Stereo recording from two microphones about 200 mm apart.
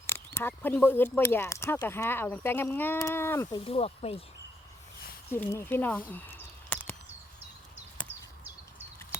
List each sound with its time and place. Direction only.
0.1 s speech: 10° left (ahead or behind)
3.6 s speech: 30° left (ahead or behind)
5.3 s a sound: 10° left (ahead or behind)